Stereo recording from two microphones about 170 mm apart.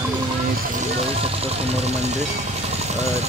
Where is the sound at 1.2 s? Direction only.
35° right (ahead or behind).